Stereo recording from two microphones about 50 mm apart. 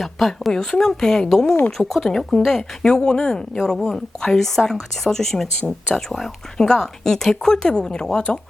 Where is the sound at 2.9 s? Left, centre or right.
Centre.